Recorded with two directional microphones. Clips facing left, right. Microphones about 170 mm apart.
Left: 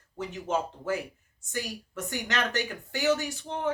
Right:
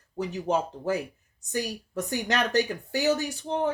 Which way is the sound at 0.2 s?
35° right (ahead or behind).